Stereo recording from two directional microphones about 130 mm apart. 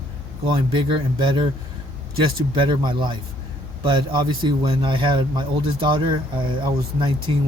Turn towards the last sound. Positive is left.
turn(degrees=-35)  # may be behind; listen again after turning